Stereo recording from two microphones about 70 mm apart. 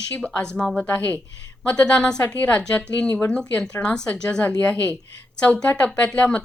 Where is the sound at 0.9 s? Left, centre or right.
Left.